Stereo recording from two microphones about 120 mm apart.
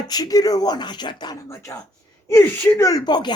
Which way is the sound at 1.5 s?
25° left (ahead or behind).